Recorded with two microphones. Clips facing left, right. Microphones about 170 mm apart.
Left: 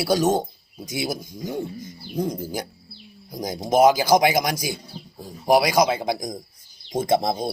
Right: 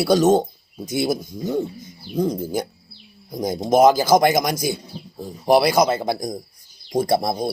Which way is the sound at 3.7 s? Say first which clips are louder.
Right 2 dB; 10° left (ahead or behind).